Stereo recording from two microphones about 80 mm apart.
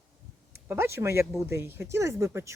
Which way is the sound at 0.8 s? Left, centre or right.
Right.